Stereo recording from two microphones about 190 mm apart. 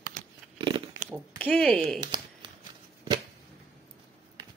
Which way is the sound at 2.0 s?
25° right (ahead or behind).